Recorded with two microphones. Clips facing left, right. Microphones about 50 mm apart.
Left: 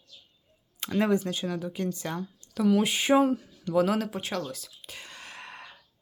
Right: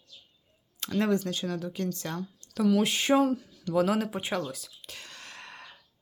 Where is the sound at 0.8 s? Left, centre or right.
Centre.